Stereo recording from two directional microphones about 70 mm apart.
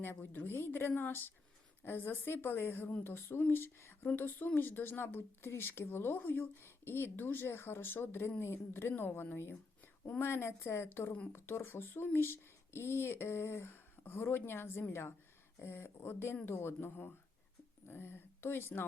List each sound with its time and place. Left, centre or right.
0.0 s speech: left